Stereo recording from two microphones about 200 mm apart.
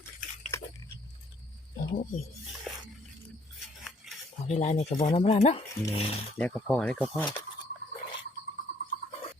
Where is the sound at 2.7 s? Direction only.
Centre (ahead or behind).